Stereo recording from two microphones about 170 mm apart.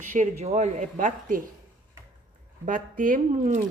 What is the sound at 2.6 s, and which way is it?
Speech, 50° right (ahead or behind).